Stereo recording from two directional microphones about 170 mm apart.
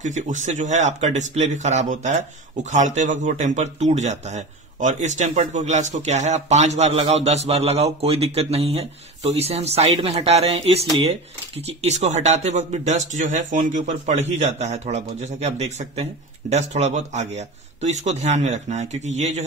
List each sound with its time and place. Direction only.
0.0 s speech: 45° right (ahead or behind)